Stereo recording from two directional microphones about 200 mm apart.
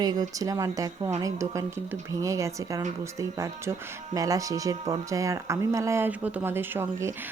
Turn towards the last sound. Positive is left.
turn(degrees=-10)  # may be behind; listen again after turning